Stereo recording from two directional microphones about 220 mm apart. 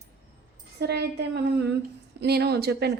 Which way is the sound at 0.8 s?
50° right (ahead or behind).